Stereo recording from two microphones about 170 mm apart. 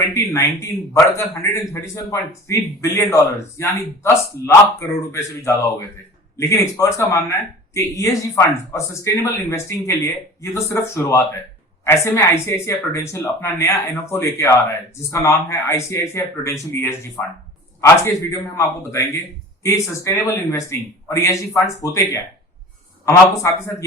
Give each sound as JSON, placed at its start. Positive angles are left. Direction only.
{"t": 0.1, "sound": "a man's voice", "side_deg": 15}